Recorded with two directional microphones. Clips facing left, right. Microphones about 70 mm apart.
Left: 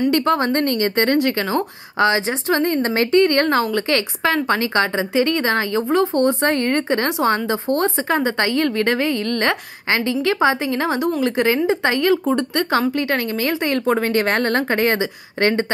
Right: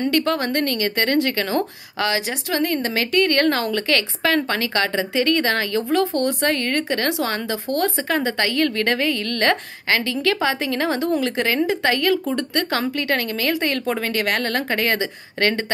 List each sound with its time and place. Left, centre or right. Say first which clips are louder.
0.1 s speech: left 3 dB; left